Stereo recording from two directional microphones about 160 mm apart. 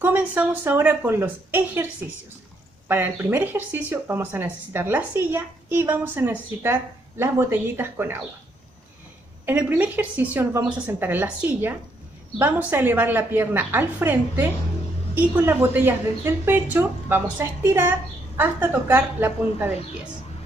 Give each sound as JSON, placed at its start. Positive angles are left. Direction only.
{"t": 0.0, "sound": "speech", "side_deg": -10}
{"t": 2.9, "sound": "speech", "side_deg": -15}
{"t": 9.5, "sound": "speech", "side_deg": -10}